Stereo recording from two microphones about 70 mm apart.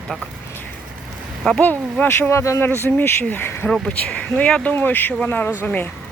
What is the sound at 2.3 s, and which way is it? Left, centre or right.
Speech, left.